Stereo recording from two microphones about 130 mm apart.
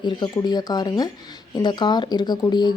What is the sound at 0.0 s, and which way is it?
Speech, 35° left (ahead or behind).